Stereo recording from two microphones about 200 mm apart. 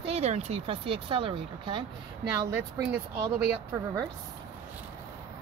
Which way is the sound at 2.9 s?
55° right (ahead or behind).